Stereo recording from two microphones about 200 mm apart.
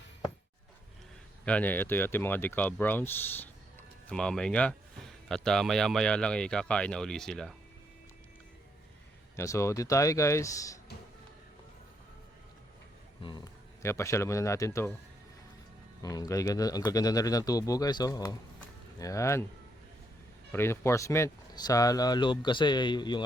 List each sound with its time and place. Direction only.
1.5 s speech: 5° left (ahead or behind)
9.3 s speech: 15° left (ahead or behind)
13.2 s speech: 20° left (ahead or behind)
16.0 s speech: 15° left (ahead or behind)
20.5 s speech: 10° left (ahead or behind)